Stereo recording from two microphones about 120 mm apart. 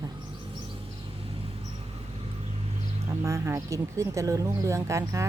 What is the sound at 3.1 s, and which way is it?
Speech, 25° right (ahead or behind).